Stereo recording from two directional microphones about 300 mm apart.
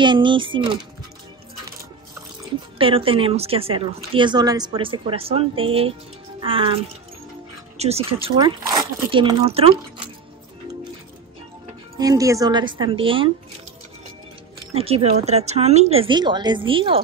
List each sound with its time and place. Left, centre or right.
0.0 s speech: centre
2.8 s speech: centre
12.0 s speech: centre
14.7 s speech: centre